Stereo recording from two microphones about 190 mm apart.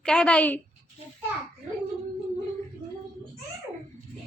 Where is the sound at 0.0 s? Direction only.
5° left (ahead or behind).